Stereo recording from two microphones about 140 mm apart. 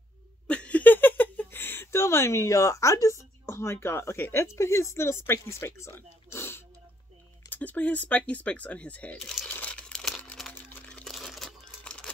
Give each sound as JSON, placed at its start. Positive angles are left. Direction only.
{"t": 0.5, "sound": "speech", "side_deg": 10}
{"t": 9.5, "sound": "crumpling", "side_deg": 10}